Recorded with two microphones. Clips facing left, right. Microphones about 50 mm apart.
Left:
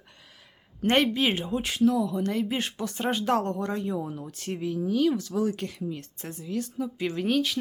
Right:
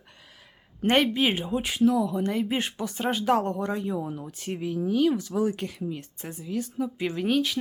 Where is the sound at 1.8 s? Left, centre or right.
Right.